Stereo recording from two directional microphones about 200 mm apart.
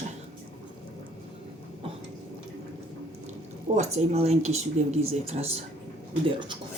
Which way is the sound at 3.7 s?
35° right (ahead or behind).